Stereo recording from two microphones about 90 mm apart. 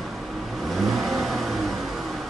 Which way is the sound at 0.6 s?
Centre (ahead or behind).